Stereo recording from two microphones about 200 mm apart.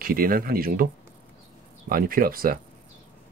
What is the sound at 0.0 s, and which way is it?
Speech, 45° right (ahead or behind).